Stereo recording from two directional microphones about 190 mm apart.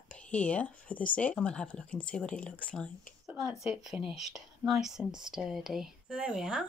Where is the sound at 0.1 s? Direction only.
5° left (ahead or behind).